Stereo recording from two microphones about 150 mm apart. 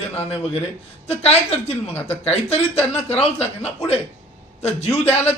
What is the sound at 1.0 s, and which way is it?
A woman's voice, 45° left (ahead or behind).